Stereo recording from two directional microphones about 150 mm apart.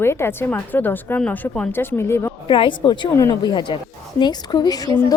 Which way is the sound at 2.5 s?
35° left (ahead or behind).